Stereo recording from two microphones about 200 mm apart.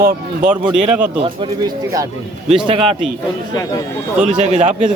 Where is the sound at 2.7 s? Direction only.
30° right (ahead or behind).